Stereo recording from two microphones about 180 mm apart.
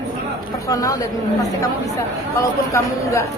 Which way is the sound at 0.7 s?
20° left (ahead or behind).